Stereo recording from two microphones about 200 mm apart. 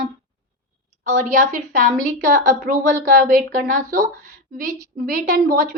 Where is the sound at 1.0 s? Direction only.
35° right (ahead or behind).